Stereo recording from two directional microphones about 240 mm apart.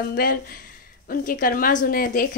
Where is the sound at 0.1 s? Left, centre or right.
Left.